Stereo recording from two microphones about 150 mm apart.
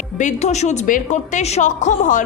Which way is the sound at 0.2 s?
50° left (ahead or behind).